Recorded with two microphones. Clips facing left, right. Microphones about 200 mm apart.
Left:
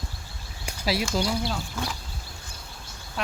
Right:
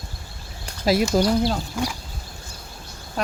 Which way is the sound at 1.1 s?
45° right (ahead or behind).